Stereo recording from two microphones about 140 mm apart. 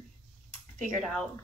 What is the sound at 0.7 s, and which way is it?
Speech, centre (ahead or behind).